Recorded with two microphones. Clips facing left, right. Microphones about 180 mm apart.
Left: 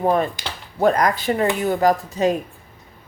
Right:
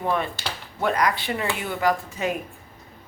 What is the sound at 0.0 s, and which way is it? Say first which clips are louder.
Speech: left 6 dB; 40° left (ahead or behind).